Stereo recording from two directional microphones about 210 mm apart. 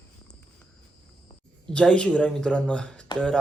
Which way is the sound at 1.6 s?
5° left (ahead or behind).